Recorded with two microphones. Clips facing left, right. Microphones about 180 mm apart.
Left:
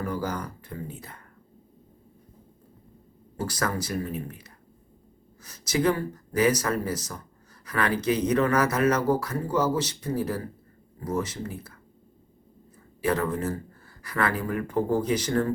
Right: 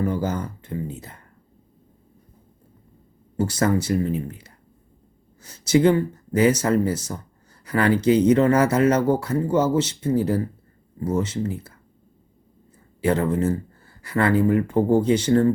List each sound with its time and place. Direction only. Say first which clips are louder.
0.0 s a sound: right 6 dB; 25° right (ahead or behind)
3.3 s speech: right 8 dB; 25° right (ahead or behind)
13.0 s speech: right 5 dB; 25° right (ahead or behind)